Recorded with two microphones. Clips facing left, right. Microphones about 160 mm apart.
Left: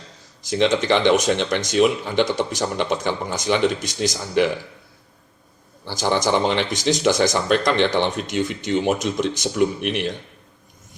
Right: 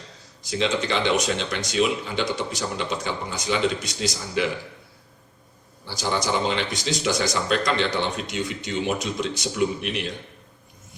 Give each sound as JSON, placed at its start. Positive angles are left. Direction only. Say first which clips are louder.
{"t": 0.9, "sound": "speech", "louder": "left 6 dB", "side_deg": 55}
{"t": 5.9, "sound": "speech", "louder": "left 5 dB", "side_deg": 50}